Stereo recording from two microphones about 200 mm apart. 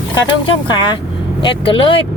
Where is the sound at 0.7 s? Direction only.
20° left (ahead or behind).